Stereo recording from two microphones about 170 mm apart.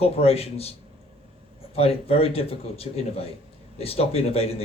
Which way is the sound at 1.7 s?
35° left (ahead or behind).